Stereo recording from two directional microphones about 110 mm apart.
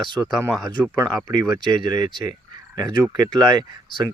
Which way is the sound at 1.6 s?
40° right (ahead or behind).